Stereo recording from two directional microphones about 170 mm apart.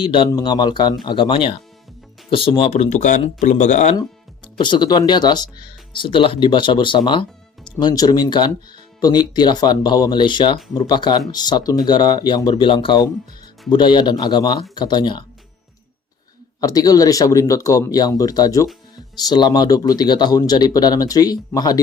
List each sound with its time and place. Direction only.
0.0 s speech: 30° left (ahead or behind)
4.5 s speech: 25° left (ahead or behind)
16.6 s speech: 20° left (ahead or behind)